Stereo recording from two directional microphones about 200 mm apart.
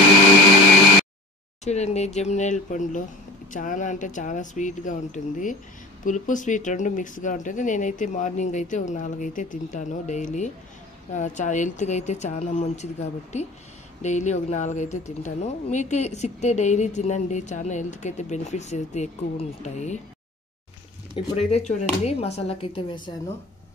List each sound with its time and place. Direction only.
1.6 s speech: 35° left (ahead or behind)
21.4 s speech: 30° left (ahead or behind)